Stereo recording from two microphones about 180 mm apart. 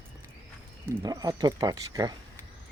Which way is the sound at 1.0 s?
20° right (ahead or behind).